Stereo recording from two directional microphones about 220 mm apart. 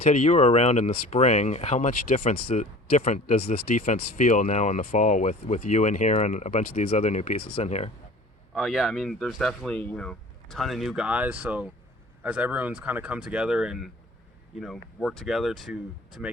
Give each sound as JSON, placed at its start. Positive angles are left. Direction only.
{"t": 0.0, "sound": "speech", "side_deg": 30}
{"t": 8.5, "sound": "speech", "side_deg": 0}